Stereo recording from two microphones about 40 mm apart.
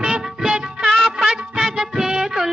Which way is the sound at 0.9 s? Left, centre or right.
Centre.